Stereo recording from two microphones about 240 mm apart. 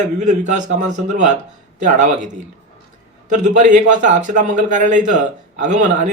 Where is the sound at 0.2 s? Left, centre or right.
Right.